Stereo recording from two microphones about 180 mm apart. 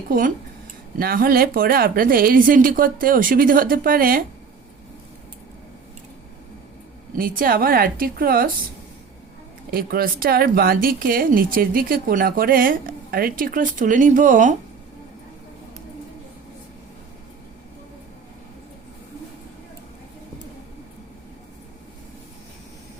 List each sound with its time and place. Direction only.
0.1 s speech: 50° right (ahead or behind)
7.2 s speech: 50° right (ahead or behind)
9.7 s speech: 55° right (ahead or behind)